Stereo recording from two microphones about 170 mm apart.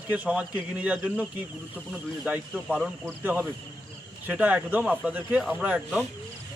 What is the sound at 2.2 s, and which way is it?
A man's voice, 5° right (ahead or behind).